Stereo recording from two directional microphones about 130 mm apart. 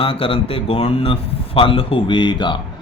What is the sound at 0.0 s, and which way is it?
Speech, 45° left (ahead or behind).